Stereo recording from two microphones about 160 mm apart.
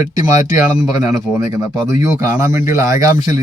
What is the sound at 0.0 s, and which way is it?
Speech, 20° right (ahead or behind).